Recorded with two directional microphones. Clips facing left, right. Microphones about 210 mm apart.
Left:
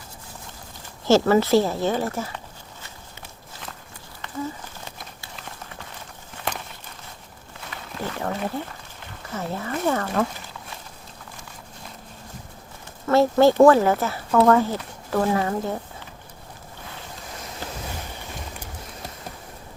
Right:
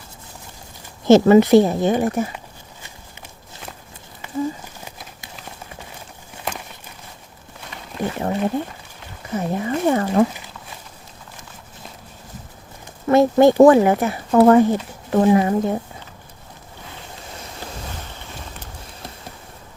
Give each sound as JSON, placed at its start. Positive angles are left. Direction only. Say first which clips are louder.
{"t": 1.0, "sound": "speech", "louder": "right 6 dB", "side_deg": -20}
{"t": 7.9, "sound": "speech", "louder": "right 6 dB", "side_deg": -20}
{"t": 13.1, "sound": "speech", "louder": "right 4 dB", "side_deg": -15}